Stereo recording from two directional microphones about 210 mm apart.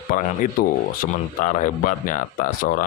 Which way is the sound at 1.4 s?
40° left (ahead or behind).